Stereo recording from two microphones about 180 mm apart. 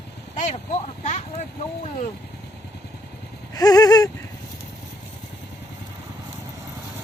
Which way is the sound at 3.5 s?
20° left (ahead or behind).